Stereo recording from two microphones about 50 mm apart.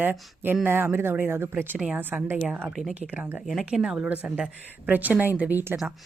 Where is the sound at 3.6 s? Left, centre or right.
Centre.